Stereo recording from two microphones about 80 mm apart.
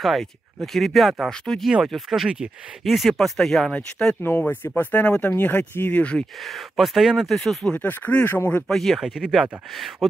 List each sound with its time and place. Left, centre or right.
0.0 s speech: centre
4.2 s speech: left
6.4 s speech: centre
7.3 s speech: centre
7.8 s speech: left
8.6 s speech: centre